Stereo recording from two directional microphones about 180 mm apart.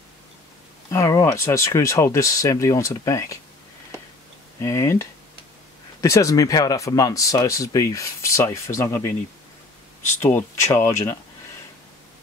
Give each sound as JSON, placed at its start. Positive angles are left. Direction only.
{"t": 0.8, "sound": "speech", "side_deg": 15}
{"t": 4.6, "sound": "speech", "side_deg": 15}
{"t": 10.2, "sound": "speech", "side_deg": 15}